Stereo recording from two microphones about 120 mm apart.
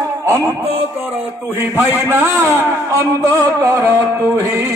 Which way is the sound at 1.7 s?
15° right (ahead or behind).